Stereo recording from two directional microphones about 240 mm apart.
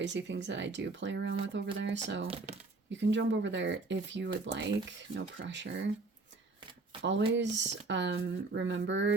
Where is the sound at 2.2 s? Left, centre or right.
Right.